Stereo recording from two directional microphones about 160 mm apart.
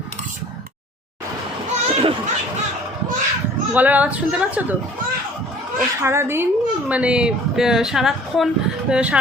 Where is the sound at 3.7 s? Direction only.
10° right (ahead or behind).